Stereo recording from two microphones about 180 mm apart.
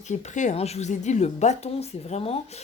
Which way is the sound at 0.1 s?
40° left (ahead or behind).